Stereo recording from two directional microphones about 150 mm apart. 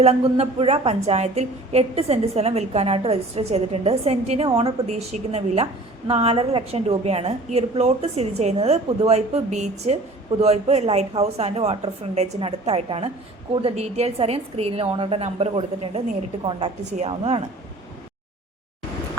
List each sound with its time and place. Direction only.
0.0 s a woman's voice: 45° right (ahead or behind)